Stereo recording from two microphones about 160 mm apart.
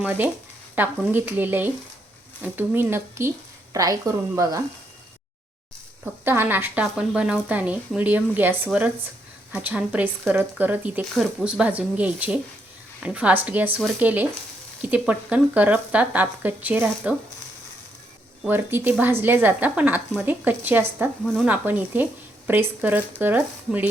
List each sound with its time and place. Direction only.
0.0 s speech: 10° right (ahead or behind)
6.2 s speech: 15° right (ahead or behind)
11.0 s speech: centre (ahead or behind)
18.4 s speech: 15° right (ahead or behind)